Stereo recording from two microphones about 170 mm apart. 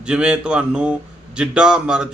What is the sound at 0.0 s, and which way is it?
Speech, 5° right (ahead or behind).